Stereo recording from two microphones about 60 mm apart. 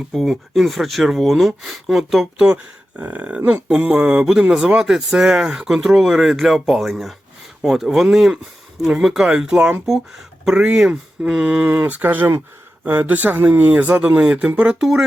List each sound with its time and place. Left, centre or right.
0.1 s speech: centre
2.5 s speech: right
3.0 s speech: right
11.6 s speech: right
14.8 s speech: centre